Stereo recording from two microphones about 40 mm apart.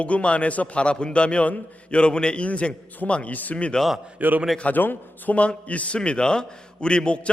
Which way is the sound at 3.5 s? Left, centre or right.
Left.